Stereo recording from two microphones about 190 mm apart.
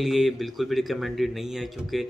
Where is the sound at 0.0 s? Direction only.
Centre (ahead or behind).